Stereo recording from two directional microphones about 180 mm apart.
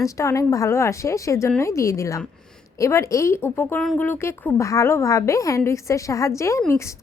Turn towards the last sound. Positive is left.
turn(degrees=15)  # may be behind; listen again after turning